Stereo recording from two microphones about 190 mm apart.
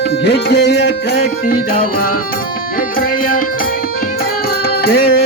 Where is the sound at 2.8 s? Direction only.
50° left (ahead or behind).